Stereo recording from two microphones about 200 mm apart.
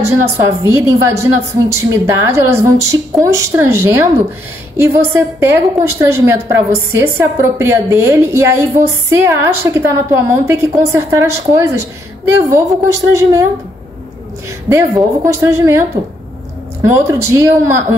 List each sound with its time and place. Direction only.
0.0 s a woman's voice: 15° right (ahead or behind)
14.7 s a woman's voice: 15° right (ahead or behind)
16.8 s a woman's voice: 15° right (ahead or behind)